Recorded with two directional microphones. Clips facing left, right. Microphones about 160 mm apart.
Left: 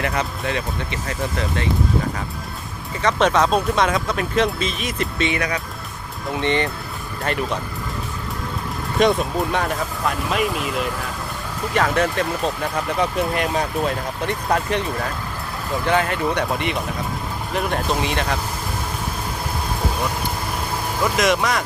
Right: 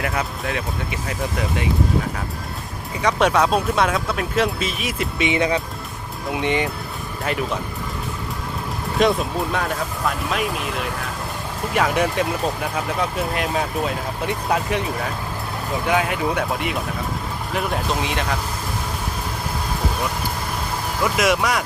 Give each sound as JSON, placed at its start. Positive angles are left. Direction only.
{"t": 0.0, "sound": "speech", "side_deg": 0}
{"t": 3.0, "sound": "speech", "side_deg": -10}
{"t": 5.4, "sound": "speech", "side_deg": -25}
{"t": 6.3, "sound": "speech", "side_deg": -10}
{"t": 9.0, "sound": "speech", "side_deg": 0}
{"t": 11.7, "sound": "speech", "side_deg": -10}
{"t": 21.0, "sound": "speech", "side_deg": -5}